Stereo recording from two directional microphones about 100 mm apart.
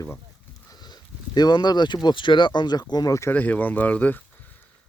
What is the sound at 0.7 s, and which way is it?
Livestock, 45° left (ahead or behind).